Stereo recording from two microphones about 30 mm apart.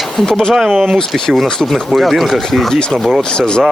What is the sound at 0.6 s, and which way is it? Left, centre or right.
Speech, centre.